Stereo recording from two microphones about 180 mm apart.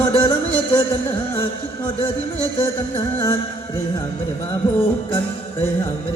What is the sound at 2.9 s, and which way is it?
Music, 20° left (ahead or behind).